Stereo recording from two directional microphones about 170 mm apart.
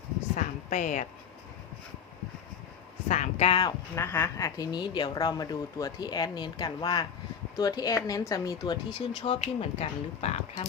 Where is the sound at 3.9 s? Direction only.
15° left (ahead or behind).